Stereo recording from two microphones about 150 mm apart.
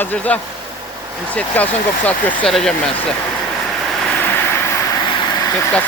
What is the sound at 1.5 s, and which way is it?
Speech, 10° left (ahead or behind).